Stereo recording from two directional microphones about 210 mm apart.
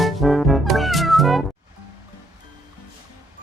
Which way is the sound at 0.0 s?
Centre (ahead or behind).